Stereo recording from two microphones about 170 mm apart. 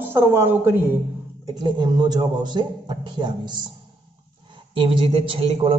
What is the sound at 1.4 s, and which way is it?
A man's voice, 25° right (ahead or behind).